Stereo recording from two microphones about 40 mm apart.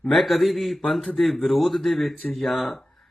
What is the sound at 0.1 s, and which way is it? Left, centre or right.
Speech, centre.